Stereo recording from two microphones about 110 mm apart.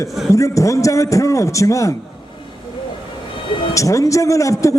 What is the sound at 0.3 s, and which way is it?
A man's voice, 30° left (ahead or behind).